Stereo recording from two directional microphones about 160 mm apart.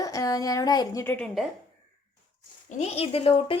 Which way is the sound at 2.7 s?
45° left (ahead or behind).